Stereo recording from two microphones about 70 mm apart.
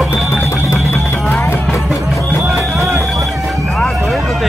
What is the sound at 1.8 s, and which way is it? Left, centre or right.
Music, centre.